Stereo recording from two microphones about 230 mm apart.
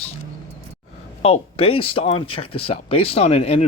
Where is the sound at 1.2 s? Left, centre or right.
Left.